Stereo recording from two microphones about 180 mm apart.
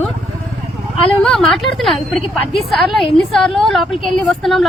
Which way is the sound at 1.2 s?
5° left (ahead or behind).